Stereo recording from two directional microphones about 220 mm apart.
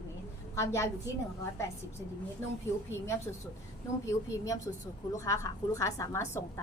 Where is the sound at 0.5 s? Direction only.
10° left (ahead or behind).